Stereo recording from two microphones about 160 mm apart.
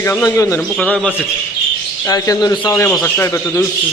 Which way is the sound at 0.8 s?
5° left (ahead or behind).